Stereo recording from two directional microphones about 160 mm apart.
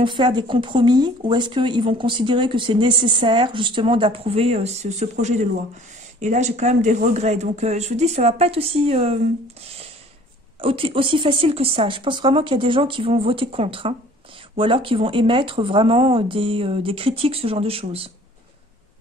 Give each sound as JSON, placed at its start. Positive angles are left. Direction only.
{"t": 0.0, "sound": "a man's voice", "side_deg": -30}
{"t": 10.6, "sound": "speech", "side_deg": -35}